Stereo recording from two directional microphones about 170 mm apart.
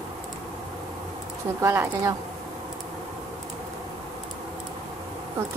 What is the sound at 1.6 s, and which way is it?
Speech, 15° right (ahead or behind).